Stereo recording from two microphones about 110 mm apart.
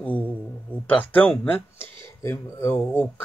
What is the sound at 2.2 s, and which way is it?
Speech, 25° left (ahead or behind).